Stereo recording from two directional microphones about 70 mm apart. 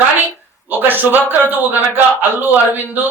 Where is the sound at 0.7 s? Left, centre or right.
Right.